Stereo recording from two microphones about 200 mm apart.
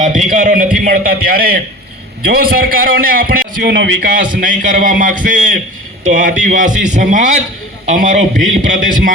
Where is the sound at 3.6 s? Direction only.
55° right (ahead or behind).